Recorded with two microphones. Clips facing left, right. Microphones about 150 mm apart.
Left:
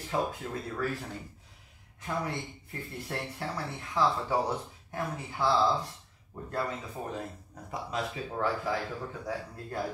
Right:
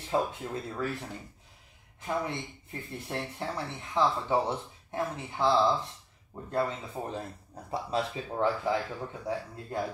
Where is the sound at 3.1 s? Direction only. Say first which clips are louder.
Right 2 dB; 15° right (ahead or behind).